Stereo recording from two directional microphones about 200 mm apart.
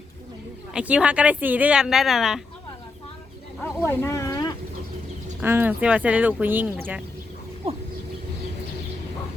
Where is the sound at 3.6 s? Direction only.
10° left (ahead or behind).